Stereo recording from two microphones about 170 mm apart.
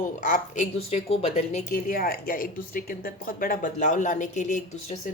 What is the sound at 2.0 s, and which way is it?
Speech, 55° left (ahead or behind).